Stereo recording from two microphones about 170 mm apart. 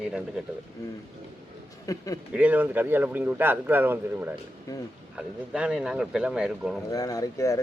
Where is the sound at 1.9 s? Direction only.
20° left (ahead or behind).